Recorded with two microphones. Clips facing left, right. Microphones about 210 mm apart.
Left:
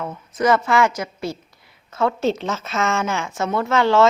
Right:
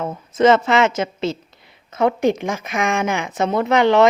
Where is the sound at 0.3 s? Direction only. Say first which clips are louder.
Right 4 dB; 25° right (ahead or behind).